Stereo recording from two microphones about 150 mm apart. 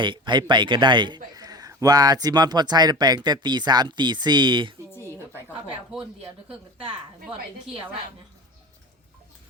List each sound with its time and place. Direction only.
0.0 s speech: 30° right (ahead or behind)
4.9 s a sound: 15° left (ahead or behind)
5.9 s speech: 5° right (ahead or behind)